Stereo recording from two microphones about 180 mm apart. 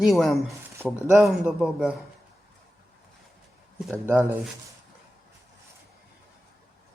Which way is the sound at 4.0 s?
10° right (ahead or behind).